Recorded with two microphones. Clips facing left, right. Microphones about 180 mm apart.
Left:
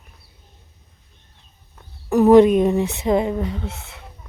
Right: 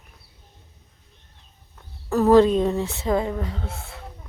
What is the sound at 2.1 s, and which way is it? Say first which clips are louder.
A woman's voice: left 4 dB; 15° left (ahead or behind).